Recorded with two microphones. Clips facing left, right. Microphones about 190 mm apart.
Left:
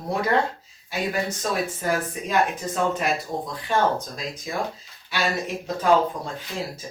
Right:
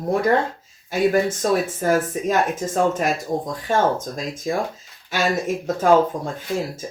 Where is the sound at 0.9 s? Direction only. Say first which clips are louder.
Right 8 dB; 50° right (ahead or behind).